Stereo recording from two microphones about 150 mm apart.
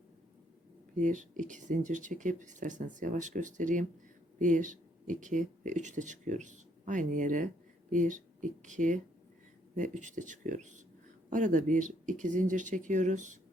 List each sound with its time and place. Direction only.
0.9 s speech: 60° right (ahead or behind)